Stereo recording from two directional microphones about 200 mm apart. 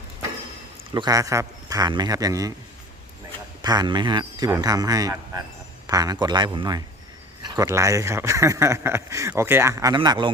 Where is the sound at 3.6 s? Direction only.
20° right (ahead or behind).